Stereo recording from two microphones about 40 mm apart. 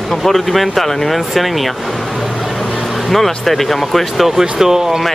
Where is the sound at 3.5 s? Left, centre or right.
Centre.